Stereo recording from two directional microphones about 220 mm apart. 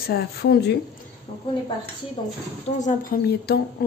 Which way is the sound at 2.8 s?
45° left (ahead or behind).